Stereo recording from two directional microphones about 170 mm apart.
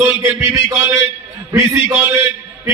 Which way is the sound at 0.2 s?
15° right (ahead or behind).